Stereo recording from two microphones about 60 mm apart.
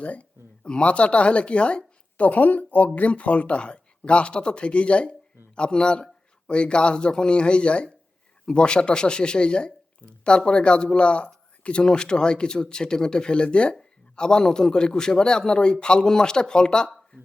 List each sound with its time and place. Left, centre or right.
0.0 s speech: left